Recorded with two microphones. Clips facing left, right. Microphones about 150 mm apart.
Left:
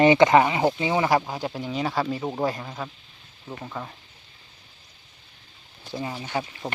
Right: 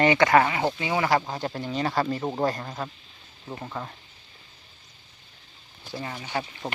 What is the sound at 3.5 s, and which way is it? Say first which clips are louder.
Speech: even; 5° right (ahead or behind).